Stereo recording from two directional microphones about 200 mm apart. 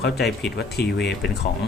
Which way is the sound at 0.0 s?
55° left (ahead or behind).